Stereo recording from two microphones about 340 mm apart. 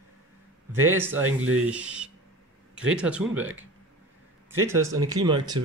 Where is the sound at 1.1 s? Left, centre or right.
Right.